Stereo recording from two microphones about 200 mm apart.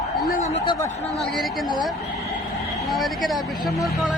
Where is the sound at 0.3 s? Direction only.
35° left (ahead or behind).